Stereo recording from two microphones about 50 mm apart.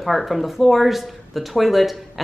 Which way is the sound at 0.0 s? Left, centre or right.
Centre.